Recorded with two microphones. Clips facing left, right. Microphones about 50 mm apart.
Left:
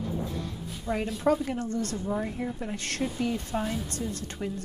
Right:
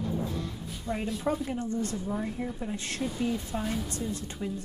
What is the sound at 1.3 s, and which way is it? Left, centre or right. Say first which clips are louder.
Speech: left 5 dB; left.